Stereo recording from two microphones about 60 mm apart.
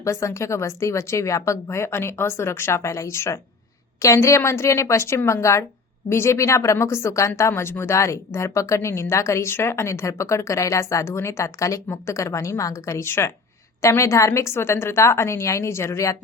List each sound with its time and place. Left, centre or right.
0.0 s a woman's voice: left
13.8 s speech: left